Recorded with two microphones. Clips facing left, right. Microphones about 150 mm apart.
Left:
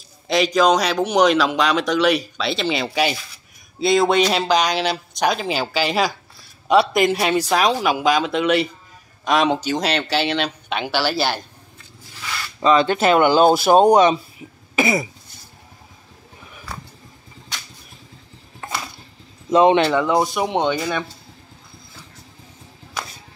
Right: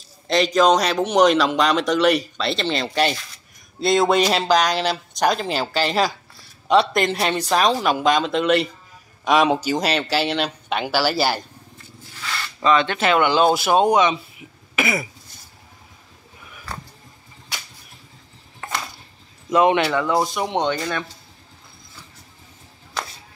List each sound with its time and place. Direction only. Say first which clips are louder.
0.3 s speech: even; 5° left (ahead or behind)
12.6 s speech: left 3 dB; 40° left (ahead or behind)
19.5 s speech: left 3 dB; 25° left (ahead or behind)
20.5 s speech: left 1 dB; 5° left (ahead or behind)